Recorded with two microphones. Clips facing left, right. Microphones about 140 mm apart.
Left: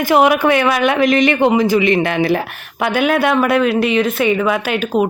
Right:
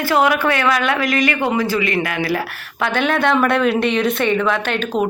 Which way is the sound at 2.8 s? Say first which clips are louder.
Left 3 dB; 10° left (ahead or behind).